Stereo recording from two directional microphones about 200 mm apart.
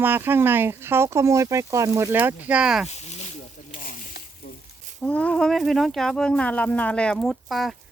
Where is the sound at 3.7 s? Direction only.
40° left (ahead or behind).